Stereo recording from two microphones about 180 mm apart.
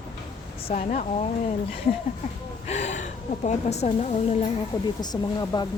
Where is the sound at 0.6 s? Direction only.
40° left (ahead or behind).